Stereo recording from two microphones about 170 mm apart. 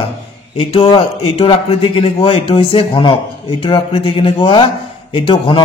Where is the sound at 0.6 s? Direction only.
35° left (ahead or behind).